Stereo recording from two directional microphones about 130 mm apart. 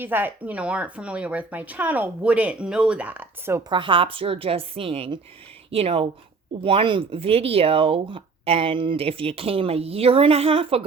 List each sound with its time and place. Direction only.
0.0 s speech: 15° right (ahead or behind)
3.7 s speech: 40° right (ahead or behind)